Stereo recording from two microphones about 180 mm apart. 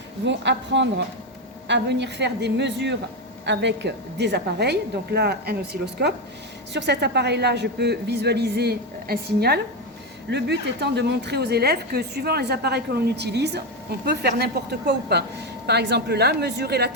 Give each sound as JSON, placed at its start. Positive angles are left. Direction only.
{"t": 0.3, "sound": "a woman's voice", "side_deg": -80}